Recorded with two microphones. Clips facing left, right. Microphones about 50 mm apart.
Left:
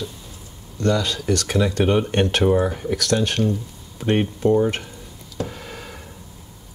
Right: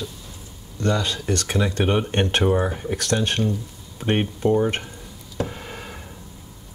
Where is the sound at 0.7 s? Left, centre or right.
Centre.